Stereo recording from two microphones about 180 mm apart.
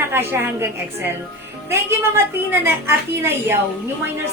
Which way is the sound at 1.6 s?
15° right (ahead or behind).